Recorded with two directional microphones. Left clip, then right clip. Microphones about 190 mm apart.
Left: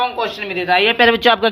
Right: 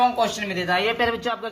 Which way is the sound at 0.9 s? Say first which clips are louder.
Left 11 dB; 45° left (ahead or behind).